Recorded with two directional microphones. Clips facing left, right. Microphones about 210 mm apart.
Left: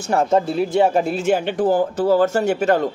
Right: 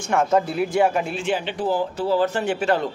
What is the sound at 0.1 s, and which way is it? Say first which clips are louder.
Speech: left 2 dB; 30° left (ahead or behind).